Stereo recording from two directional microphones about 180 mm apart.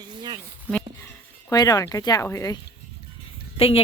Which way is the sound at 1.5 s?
20° left (ahead or behind).